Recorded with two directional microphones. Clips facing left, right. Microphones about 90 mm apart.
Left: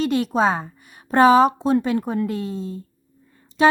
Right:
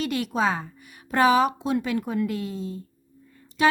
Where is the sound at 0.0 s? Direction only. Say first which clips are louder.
Left 5 dB; 30° left (ahead or behind).